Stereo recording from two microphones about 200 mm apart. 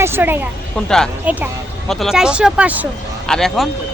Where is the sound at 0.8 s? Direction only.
5° left (ahead or behind).